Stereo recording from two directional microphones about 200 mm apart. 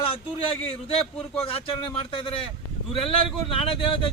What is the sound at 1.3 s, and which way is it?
A man's voice, 30° left (ahead or behind).